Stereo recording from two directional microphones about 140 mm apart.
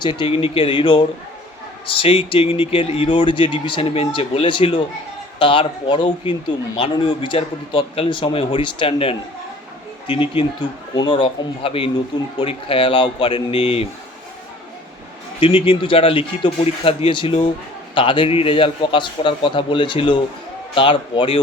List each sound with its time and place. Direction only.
0.0 s speech: 35° left (ahead or behind)
15.4 s speech: 40° left (ahead or behind)